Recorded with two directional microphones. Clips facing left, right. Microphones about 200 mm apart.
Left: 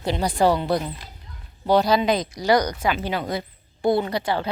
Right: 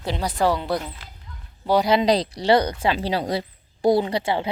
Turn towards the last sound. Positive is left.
turn(degrees=-25)  # may be behind; listen again after turning